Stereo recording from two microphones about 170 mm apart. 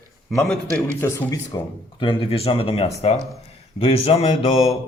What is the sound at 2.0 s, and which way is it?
Speech, 30° left (ahead or behind).